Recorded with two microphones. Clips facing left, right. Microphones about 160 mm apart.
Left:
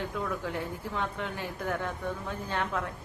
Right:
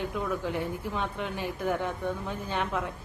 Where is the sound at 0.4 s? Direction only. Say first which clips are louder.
Right 3 dB; 20° right (ahead or behind).